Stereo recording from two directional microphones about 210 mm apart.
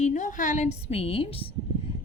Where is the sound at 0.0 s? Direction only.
35° left (ahead or behind).